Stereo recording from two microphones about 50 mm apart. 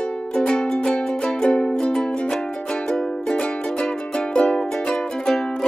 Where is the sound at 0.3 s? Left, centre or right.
Centre.